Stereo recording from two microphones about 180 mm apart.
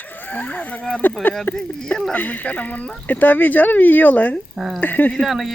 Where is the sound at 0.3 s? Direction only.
10° left (ahead or behind).